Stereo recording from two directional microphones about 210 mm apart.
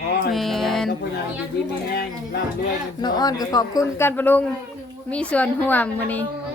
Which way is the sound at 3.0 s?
20° left (ahead or behind).